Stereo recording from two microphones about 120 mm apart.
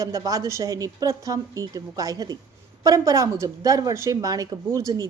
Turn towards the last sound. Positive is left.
turn(degrees=-25)  # may be behind; listen again after turning